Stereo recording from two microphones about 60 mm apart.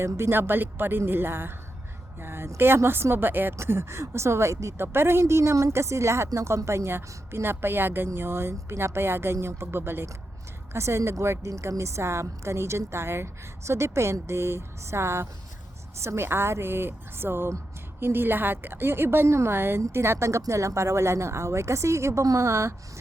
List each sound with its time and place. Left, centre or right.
0.0 s a woman's voice: right
3.6 s a woman's voice: right